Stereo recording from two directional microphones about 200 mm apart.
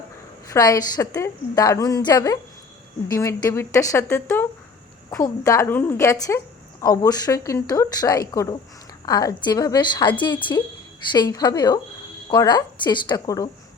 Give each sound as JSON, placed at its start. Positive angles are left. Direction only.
{"t": 0.5, "sound": "a woman's voice", "side_deg": 15}